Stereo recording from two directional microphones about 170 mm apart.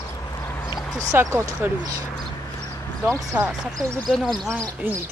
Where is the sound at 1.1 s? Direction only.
15° right (ahead or behind).